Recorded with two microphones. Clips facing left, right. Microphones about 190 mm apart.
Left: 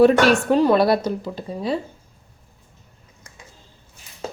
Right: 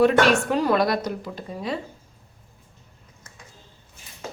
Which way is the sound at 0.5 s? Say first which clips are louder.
Left 5 dB; 30° left (ahead or behind).